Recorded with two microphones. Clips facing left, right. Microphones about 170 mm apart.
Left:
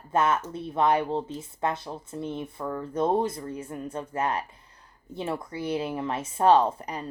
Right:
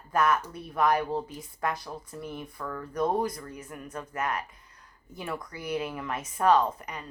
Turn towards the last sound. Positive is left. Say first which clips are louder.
# left 3 dB
turn(degrees=30)  # may be behind; listen again after turning